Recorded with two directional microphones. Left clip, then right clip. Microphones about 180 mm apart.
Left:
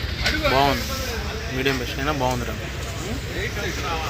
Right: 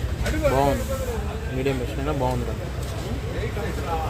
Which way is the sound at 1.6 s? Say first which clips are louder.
Left 3 dB; 10° left (ahead or behind).